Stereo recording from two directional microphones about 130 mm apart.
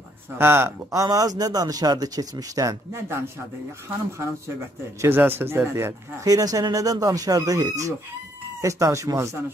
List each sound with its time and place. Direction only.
0.4 s speech: 20° right (ahead or behind)
5.0 s speech: 15° right (ahead or behind)